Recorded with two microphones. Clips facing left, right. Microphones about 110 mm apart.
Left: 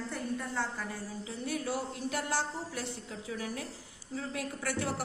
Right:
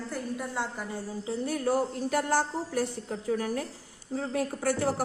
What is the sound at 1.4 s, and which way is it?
A woman's voice, 45° right (ahead or behind).